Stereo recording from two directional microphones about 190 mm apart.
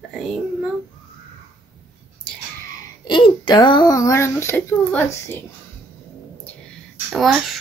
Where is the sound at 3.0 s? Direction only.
25° left (ahead or behind); by 5.5 s 10° left (ahead or behind).